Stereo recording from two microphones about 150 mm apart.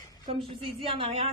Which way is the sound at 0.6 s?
40° right (ahead or behind).